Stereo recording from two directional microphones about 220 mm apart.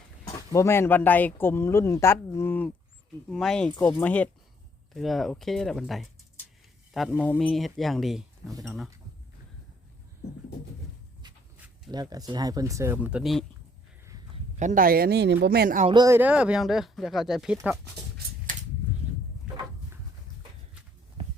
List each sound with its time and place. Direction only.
0.5 s speech: 10° left (ahead or behind)
11.9 s speech: 15° right (ahead or behind)
14.6 s speech: 35° right (ahead or behind)
15.9 s speech: 15° right (ahead or behind)
19.5 s a sound: 5° right (ahead or behind)